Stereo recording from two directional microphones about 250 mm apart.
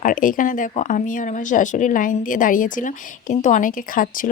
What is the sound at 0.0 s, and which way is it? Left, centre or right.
Speech, left.